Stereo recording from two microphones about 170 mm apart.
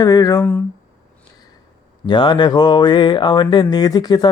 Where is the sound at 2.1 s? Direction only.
25° left (ahead or behind).